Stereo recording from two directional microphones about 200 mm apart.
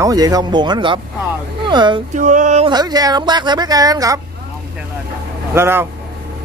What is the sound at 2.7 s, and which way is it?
A woman's voice, 20° right (ahead or behind).